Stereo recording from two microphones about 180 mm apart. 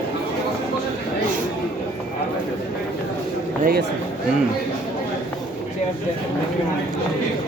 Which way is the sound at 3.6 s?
55° right (ahead or behind).